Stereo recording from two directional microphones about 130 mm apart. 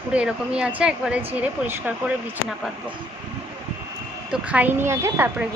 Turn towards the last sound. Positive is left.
turn(degrees=-20)  # may be behind; listen again after turning